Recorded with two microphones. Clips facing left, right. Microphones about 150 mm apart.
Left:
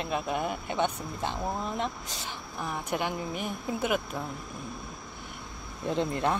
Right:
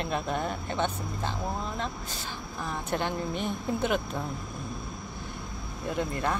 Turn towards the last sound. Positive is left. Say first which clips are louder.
# left 2 dB
turn(degrees=20)  # may be behind; listen again after turning